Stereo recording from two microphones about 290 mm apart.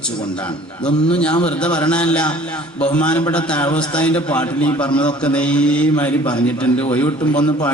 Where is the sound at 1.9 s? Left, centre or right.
Centre.